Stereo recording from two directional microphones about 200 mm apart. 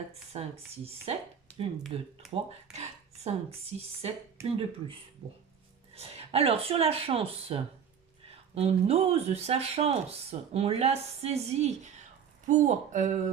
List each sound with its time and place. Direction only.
0.1 s speech: 30° right (ahead or behind)
1.5 s a sound: 5° left (ahead or behind)
1.9 s speech: 30° right (ahead or behind)